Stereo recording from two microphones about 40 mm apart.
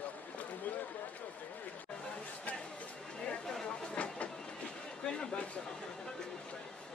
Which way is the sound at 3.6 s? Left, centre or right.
Left.